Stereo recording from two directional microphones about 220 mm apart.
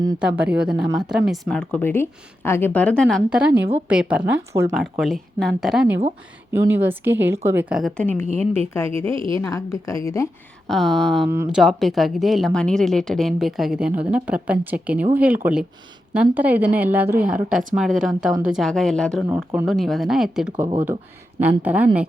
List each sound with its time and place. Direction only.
0.2 s a woman's voice: 5° right (ahead or behind); by 8.9 s 10° left (ahead or behind)
9.1 s a woman's voice: 25° right (ahead or behind)
9.4 s a woman's voice: 15° left (ahead or behind)
10.7 s a woman's voice: centre (ahead or behind)
19.3 s a woman's voice: 5° right (ahead or behind)